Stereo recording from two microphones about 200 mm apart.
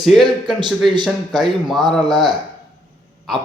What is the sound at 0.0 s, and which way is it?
Speech, centre (ahead or behind).